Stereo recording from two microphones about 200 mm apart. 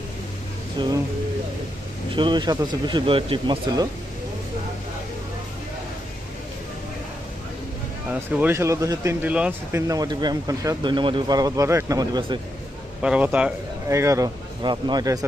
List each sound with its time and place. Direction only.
0.8 s speech: 20° right (ahead or behind)
2.1 s speech: 25° right (ahead or behind)
8.1 s speech: 5° right (ahead or behind)
13.0 s speech: 5° right (ahead or behind)